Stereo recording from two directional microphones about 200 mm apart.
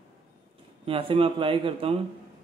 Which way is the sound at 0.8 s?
25° right (ahead or behind).